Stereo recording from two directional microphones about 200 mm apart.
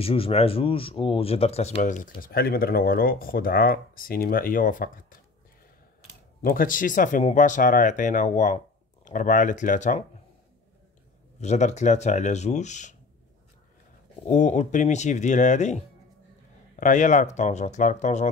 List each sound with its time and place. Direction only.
0.0 s speech: 30° left (ahead or behind); by 5.0 s 45° left (ahead or behind)
6.4 s speech: 45° left (ahead or behind)
11.4 s speech: 35° left (ahead or behind)
14.2 s speech: 35° left (ahead or behind)